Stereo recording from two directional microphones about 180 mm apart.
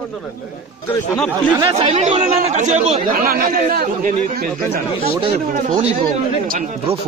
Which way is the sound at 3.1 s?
55° right (ahead or behind).